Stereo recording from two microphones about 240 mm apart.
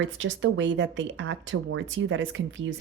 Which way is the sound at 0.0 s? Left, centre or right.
Right.